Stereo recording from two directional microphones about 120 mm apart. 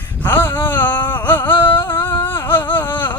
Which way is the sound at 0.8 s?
40° left (ahead or behind).